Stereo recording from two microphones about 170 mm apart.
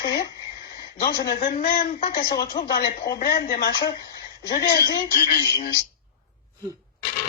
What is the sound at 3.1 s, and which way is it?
Speech, 50° left (ahead or behind).